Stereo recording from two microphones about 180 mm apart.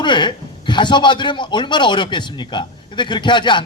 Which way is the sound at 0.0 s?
25° left (ahead or behind).